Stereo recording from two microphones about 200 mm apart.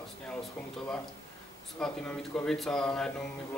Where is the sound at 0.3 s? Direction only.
5° left (ahead or behind).